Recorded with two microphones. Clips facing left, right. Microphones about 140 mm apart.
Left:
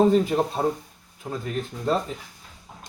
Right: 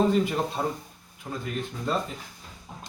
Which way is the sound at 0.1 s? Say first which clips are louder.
Left 4 dB; 30° left (ahead or behind).